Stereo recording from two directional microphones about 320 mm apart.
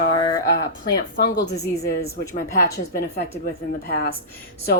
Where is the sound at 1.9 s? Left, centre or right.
Left.